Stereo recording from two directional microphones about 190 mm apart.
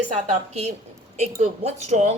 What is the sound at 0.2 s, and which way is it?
Speech, 35° right (ahead or behind).